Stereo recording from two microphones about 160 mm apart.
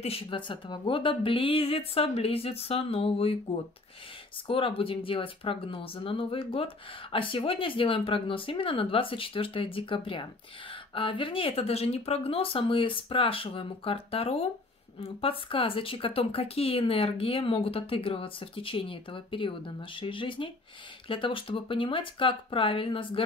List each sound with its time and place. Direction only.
0.0 s speech: 35° left (ahead or behind)